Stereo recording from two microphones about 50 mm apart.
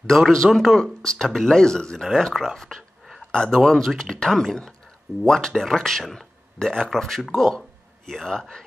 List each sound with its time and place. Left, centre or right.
0.0 s speech: centre
0.5 s speech: centre
1.2 s speech: centre
2.1 s speech: centre